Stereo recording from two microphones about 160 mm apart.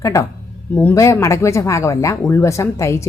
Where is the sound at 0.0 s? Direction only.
20° left (ahead or behind).